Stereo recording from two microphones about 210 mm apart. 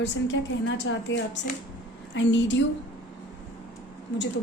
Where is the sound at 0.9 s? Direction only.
65° left (ahead or behind).